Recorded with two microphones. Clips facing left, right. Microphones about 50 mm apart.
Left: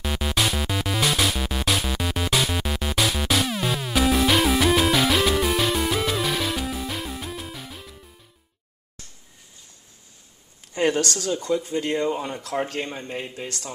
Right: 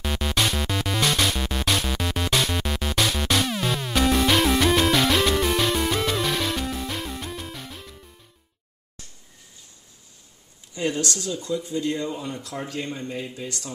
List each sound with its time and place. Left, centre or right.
0.0 s music: centre
10.7 s speech: left
12.8 s speech: left
13.4 s speech: left